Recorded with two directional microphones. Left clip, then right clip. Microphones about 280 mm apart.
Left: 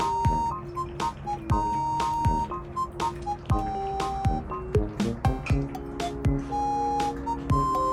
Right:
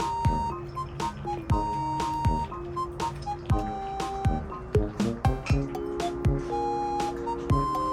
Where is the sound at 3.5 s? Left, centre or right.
Centre.